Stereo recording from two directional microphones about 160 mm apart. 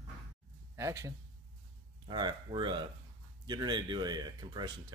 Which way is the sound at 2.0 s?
30° right (ahead or behind).